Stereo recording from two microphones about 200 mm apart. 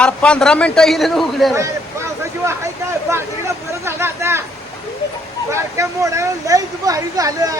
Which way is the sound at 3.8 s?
10° right (ahead or behind).